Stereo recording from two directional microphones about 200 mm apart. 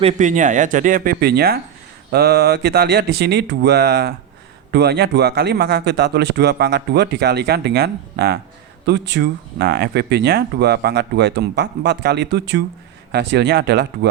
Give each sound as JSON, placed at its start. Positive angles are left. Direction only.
{"t": 0.0, "sound": "speech", "side_deg": -35}